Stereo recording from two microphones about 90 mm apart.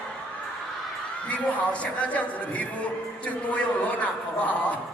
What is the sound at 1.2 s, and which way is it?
A man's voice, 15° left (ahead or behind).